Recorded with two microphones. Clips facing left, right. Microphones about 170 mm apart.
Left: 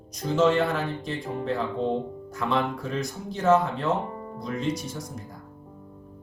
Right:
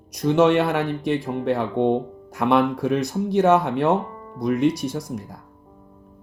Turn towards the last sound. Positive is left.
turn(degrees=-75)  # may be behind; listen again after turning